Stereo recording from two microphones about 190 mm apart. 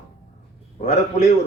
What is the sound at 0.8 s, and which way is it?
Speech, 40° left (ahead or behind).